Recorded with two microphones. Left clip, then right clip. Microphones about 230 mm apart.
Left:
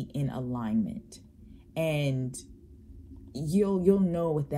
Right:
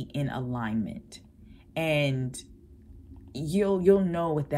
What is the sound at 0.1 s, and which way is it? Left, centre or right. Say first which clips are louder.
Speech: right 3 dB; right.